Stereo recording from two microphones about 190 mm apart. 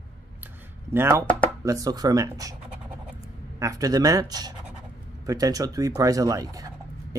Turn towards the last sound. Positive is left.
turn(degrees=-20)  # may be behind; listen again after turning